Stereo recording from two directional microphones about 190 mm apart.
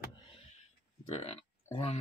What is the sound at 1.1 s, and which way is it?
Speech, 30° left (ahead or behind).